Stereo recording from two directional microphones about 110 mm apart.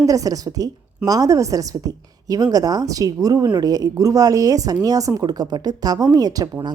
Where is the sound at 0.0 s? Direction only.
30° right (ahead or behind).